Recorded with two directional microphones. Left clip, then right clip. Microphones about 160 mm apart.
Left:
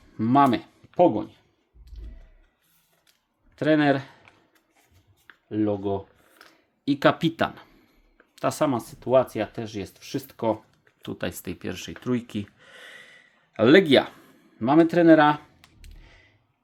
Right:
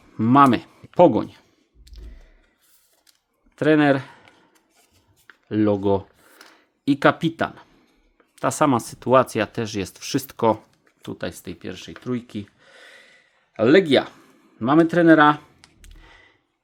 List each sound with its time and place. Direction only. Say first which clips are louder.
0.2 s speech: right 4 dB; 35° right (ahead or behind)
0.9 s speech: right 5 dB; 60° right (ahead or behind)
3.5 s speech: right 4 dB; 25° right (ahead or behind)
5.5 s speech: right 6 dB; 65° right (ahead or behind)
6.8 s speech: right 3 dB; 25° right (ahead or behind)
7.1 s speech: right 2 dB; 10° right (ahead or behind)
8.4 s speech: right 5 dB; 25° right (ahead or behind); by 10.6 s 45° right (ahead or behind)
11.0 s speech: right 1 dB; 15° right (ahead or behind)
11.3 s speech: even; centre (ahead or behind)
14.6 s clicking: right 2 dB; 25° right (ahead or behind)